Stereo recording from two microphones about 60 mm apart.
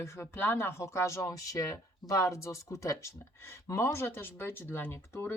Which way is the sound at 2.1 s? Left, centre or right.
Left.